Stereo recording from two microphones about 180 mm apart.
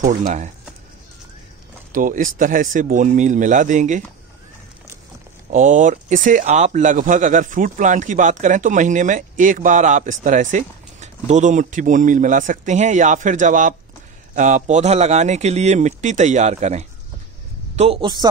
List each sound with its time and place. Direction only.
0.0 s speech: 40° right (ahead or behind)
1.9 s speech: 45° right (ahead or behind)
5.5 s speech: 45° right (ahead or behind)